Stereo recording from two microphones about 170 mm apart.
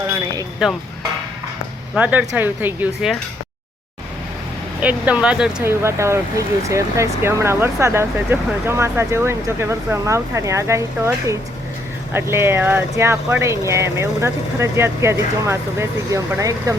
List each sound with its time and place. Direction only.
0.6 s speech: 5° right (ahead or behind)
2.0 s speech: 10° right (ahead or behind)
4.8 s speech: 10° right (ahead or behind)